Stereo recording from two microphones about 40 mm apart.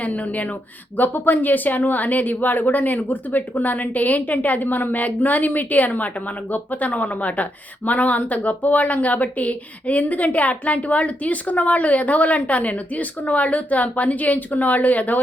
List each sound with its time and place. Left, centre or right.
0.0 s speech: left
0.9 s a woman's voice: left